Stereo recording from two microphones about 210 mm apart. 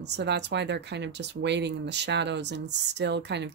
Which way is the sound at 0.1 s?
55° right (ahead or behind).